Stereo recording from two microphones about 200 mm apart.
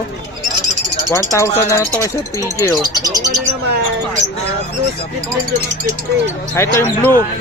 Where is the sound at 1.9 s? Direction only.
15° left (ahead or behind).